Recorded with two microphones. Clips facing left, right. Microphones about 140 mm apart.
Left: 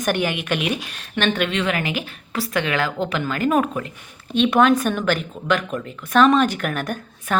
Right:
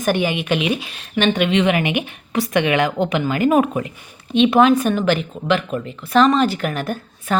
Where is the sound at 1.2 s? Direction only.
10° right (ahead or behind).